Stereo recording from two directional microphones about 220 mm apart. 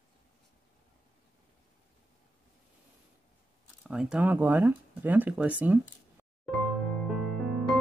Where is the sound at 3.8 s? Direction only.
5° right (ahead or behind).